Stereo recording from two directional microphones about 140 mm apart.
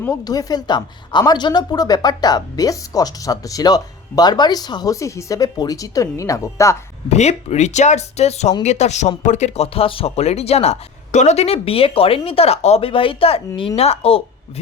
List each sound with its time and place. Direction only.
0.0 s a woman's voice: 25° left (ahead or behind)
7.2 s speech: 55° left (ahead or behind)